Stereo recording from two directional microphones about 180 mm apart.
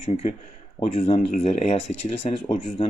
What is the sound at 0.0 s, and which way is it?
Speech, 35° left (ahead or behind).